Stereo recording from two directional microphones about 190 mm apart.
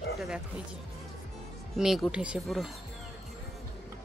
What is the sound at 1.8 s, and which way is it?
Speech, 5° right (ahead or behind).